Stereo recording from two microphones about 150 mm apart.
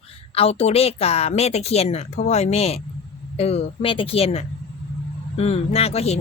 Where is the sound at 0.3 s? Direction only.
40° left (ahead or behind).